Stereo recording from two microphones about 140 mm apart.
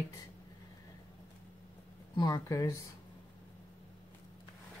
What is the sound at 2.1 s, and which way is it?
Speech, 30° left (ahead or behind).